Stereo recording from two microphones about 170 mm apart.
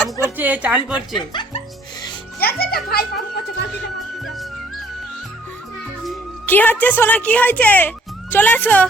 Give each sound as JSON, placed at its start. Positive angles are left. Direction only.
{"t": 0.2, "sound": "a woman's voice", "side_deg": -10}
{"t": 1.3, "sound": "speech", "side_deg": 25}
{"t": 2.4, "sound": "a child's voice", "side_deg": 65}
{"t": 4.2, "sound": "music", "side_deg": 0}
{"t": 6.4, "sound": "speech", "side_deg": 10}